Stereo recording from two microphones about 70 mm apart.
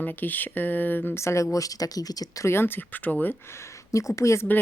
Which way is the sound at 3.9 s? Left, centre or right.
Left.